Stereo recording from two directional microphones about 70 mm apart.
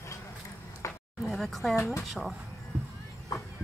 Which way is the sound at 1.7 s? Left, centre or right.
Left.